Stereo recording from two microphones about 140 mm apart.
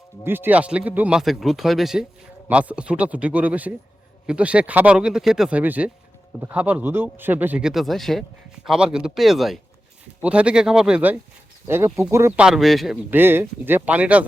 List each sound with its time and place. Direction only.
0.3 s speech: 15° right (ahead or behind)
12.4 s speech: 5° right (ahead or behind)
13.1 s speech: 15° right (ahead or behind)